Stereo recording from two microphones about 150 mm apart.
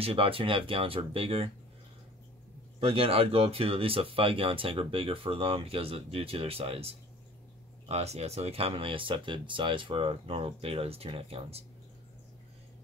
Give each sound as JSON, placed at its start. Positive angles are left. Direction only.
{"t": 0.0, "sound": "speech", "side_deg": -40}
{"t": 2.8, "sound": "speech", "side_deg": -40}